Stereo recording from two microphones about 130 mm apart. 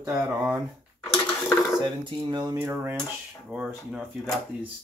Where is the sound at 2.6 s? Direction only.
15° right (ahead or behind).